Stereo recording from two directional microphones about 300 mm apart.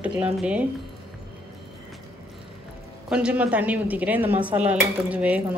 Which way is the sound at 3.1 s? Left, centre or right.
Centre.